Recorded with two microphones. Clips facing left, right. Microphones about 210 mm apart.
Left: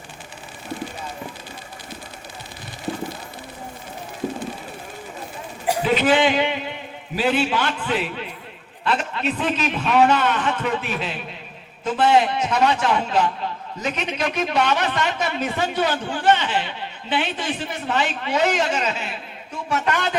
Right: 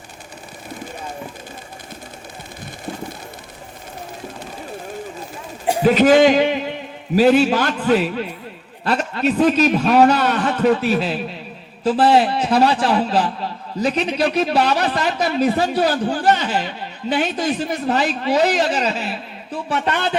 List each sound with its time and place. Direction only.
5.8 s a man's voice: 40° right (ahead or behind)